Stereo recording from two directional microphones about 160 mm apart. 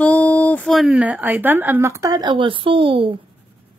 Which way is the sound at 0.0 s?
10° left (ahead or behind).